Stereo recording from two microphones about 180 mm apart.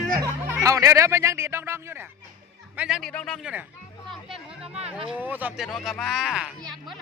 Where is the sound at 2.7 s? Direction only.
5° right (ahead or behind).